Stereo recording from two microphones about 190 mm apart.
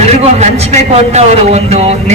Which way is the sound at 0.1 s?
35° right (ahead or behind).